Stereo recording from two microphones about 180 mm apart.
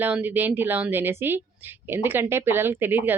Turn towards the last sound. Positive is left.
turn(degrees=-10)  # may be behind; listen again after turning